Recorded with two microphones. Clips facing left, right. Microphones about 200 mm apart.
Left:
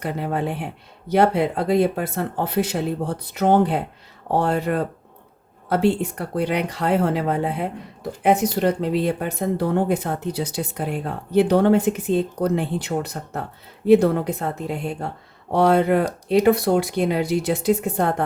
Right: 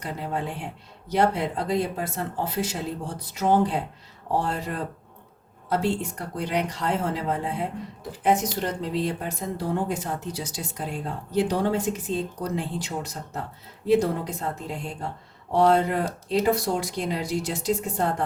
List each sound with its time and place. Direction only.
0.0 s speech: 60° left (ahead or behind)